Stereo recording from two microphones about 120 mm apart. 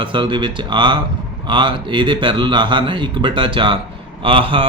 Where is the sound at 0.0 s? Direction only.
45° right (ahead or behind).